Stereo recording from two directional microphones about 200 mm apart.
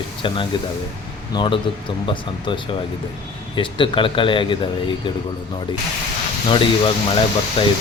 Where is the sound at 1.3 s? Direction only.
25° left (ahead or behind).